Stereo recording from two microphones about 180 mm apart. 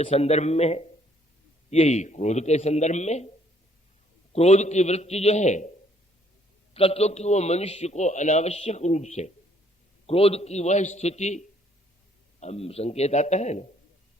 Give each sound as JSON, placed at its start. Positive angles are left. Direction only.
{"t": 0.0, "sound": "a man's voice", "side_deg": 35}
{"t": 4.3, "sound": "a man's voice", "side_deg": 40}
{"t": 6.7, "sound": "a man's voice", "side_deg": 35}